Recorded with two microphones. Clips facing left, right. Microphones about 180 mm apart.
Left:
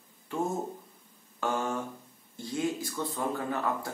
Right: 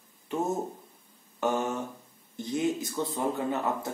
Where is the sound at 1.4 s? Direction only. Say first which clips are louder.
Right 3 dB; 20° right (ahead or behind).